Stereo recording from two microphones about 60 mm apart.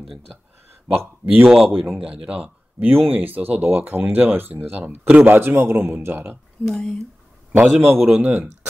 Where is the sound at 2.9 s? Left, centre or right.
Right.